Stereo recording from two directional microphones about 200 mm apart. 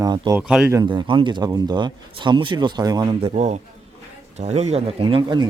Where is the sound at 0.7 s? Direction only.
20° right (ahead or behind).